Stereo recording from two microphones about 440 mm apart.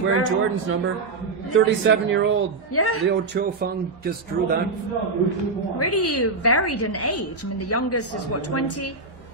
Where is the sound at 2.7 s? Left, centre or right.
Left.